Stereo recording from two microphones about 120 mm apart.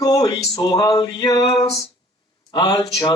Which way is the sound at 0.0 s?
30° left (ahead or behind).